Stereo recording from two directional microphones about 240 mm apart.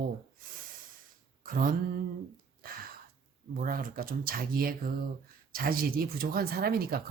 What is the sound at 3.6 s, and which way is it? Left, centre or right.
Speech, right.